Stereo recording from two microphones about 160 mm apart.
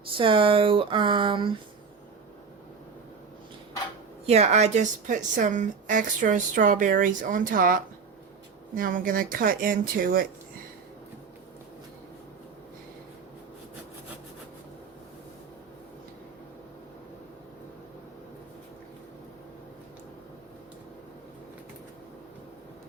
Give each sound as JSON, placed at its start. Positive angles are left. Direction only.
{"t": 0.2, "sound": "speech", "side_deg": -35}
{"t": 4.3, "sound": "speech", "side_deg": -45}